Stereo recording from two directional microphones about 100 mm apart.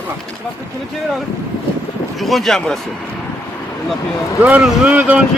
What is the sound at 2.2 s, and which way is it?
Speech, centre (ahead or behind).